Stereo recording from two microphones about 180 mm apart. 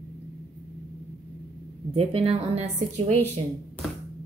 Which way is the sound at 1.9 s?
30° right (ahead or behind).